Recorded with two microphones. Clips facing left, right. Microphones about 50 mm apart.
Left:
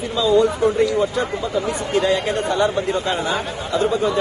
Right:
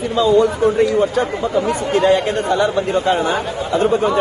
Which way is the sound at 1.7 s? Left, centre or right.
Right.